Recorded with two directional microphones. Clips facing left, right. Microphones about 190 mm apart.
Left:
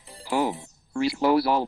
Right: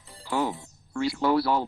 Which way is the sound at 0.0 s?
20° left (ahead or behind).